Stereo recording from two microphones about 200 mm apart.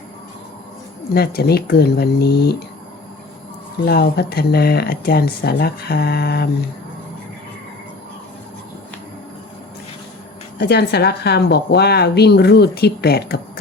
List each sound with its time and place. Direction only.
1.1 s a woman's voice: 50° left (ahead or behind)
3.8 s a woman's voice: 50° left (ahead or behind)
10.6 s a woman's voice: 55° left (ahead or behind)